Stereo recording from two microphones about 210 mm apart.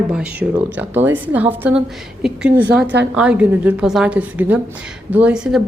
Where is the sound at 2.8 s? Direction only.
55° right (ahead or behind).